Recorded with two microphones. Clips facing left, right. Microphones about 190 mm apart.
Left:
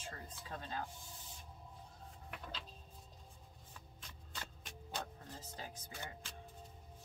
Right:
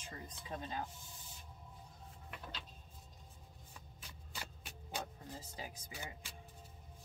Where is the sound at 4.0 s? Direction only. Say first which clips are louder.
Right 1 dB; 10° right (ahead or behind).